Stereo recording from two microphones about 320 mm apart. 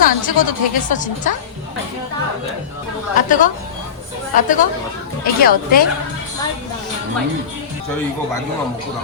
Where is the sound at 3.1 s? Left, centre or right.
Left.